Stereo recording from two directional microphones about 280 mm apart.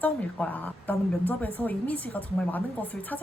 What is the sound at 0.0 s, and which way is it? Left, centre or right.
A woman's voice, centre.